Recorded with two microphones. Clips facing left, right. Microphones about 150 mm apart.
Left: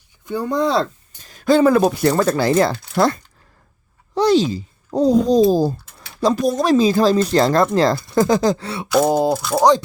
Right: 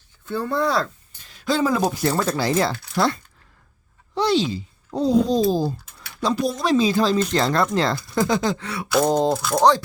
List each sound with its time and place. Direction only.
0.3 s speech: 15° left (ahead or behind)
1.2 s speech: 45° left (ahead or behind); by 2.4 s 70° left (ahead or behind)
2.4 s speech: 55° left (ahead or behind)
5.5 s typing: 40° left (ahead or behind)
6.3 s speech: 45° left (ahead or behind); by 8.9 s 30° left (ahead or behind)
8.9 s speech: 5° left (ahead or behind)